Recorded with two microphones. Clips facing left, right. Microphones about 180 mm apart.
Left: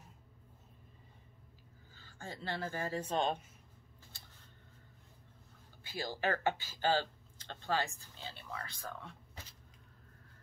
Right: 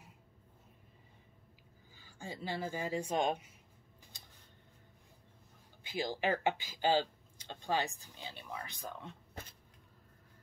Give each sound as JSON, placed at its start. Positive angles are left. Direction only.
{"t": 2.0, "sound": "speech", "side_deg": -15}
{"t": 5.9, "sound": "speech", "side_deg": -15}
{"t": 9.3, "sound": "vehicle", "side_deg": -55}